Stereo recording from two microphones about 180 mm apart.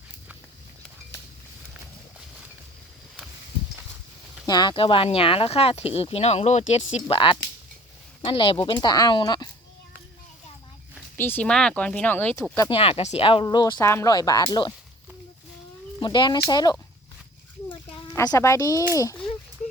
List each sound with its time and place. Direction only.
4.4 s speech: 25° left (ahead or behind)
11.2 s speech: 10° left (ahead or behind)
12.7 s speech: 35° left (ahead or behind)
16.0 s speech: 25° left (ahead or behind)
17.7 s a sound: 25° left (ahead or behind)
18.1 s speech: 15° left (ahead or behind)